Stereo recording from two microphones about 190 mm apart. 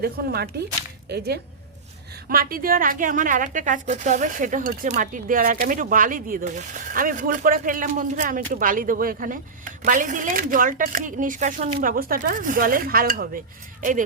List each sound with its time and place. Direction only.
0.0 s a woman's voice: 55° right (ahead or behind)